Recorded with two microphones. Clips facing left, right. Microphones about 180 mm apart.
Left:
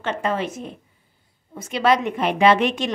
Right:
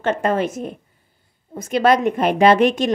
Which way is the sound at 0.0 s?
50° right (ahead or behind).